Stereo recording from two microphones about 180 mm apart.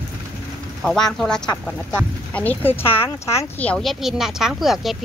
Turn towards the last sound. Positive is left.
turn(degrees=0)  # may be behind; listen again after turning